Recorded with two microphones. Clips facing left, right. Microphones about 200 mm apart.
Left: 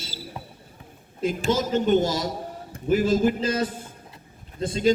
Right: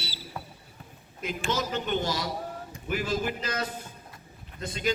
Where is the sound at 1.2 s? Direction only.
50° left (ahead or behind).